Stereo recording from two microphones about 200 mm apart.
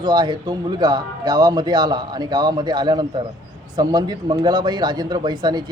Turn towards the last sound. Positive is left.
turn(degrees=-20)  # may be behind; listen again after turning